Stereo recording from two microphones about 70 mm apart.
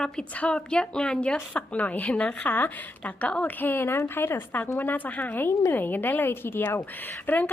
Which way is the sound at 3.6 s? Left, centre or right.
Left.